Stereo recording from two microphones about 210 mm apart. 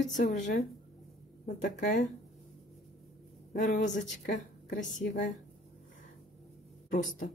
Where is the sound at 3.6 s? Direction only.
35° left (ahead or behind).